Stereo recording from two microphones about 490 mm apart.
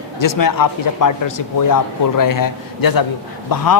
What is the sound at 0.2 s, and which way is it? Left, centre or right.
A man's voice, left.